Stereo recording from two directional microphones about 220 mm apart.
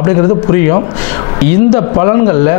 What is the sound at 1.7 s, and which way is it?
Speech, 25° left (ahead or behind).